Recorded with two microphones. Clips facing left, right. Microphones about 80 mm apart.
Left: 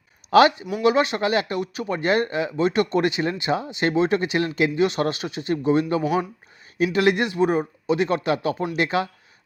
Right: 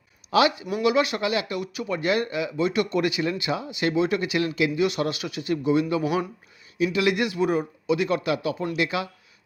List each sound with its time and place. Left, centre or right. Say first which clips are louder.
0.3 s speech: left 5 dB; left
0.8 s speech: left 3 dB; left
6.7 s speech: left 3 dB; left